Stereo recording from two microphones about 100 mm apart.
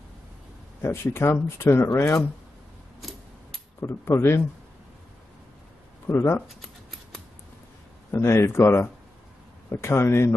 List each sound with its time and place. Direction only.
0.8 s speech: 25° left (ahead or behind)
3.0 s a sound: centre (ahead or behind)
3.8 s speech: 25° left (ahead or behind)
6.0 s speech: 25° left (ahead or behind)
8.1 s speech: 25° left (ahead or behind)